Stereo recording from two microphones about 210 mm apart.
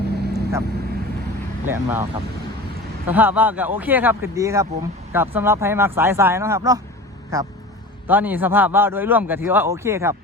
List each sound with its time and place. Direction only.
0.0 s vehicle: 50° right (ahead or behind)
1.6 s a man's voice: 10° right (ahead or behind)
3.1 s a man's voice: 10° right (ahead or behind)